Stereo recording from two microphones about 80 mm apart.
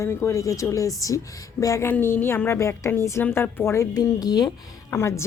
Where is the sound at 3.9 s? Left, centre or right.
Left.